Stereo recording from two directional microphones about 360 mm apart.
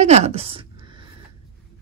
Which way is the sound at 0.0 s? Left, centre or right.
Centre.